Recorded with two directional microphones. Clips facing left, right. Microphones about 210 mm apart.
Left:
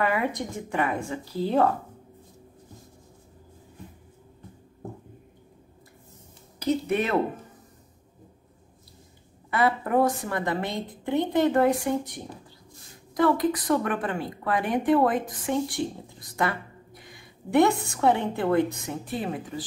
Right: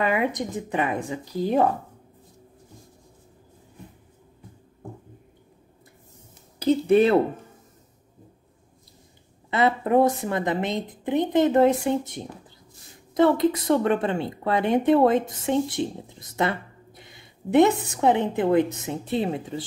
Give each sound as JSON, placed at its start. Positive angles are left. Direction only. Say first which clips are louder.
{"t": 0.0, "sound": "speech", "louder": "right 2 dB", "side_deg": -20}
{"t": 6.6, "sound": "speech", "louder": "right 7 dB", "side_deg": -30}
{"t": 9.5, "sound": "a woman's voice", "louder": "right 3 dB", "side_deg": -25}